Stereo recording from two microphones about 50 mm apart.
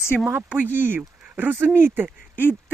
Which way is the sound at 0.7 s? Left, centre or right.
Right.